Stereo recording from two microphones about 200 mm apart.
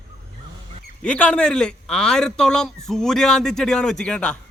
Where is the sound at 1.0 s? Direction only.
5° left (ahead or behind).